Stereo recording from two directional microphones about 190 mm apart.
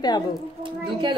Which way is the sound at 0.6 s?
25° right (ahead or behind).